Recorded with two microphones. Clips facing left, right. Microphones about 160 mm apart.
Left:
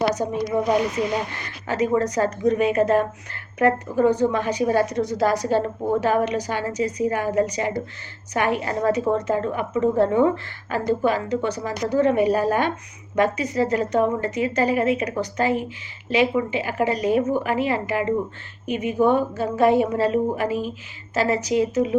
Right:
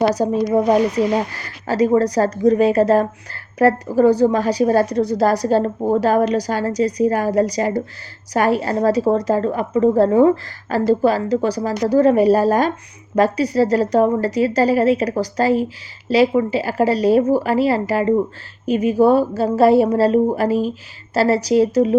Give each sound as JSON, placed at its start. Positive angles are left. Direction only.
{"t": 0.1, "sound": "a woman's voice", "side_deg": -35}